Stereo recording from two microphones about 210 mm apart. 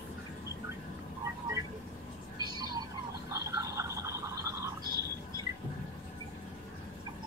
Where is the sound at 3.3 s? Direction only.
15° right (ahead or behind).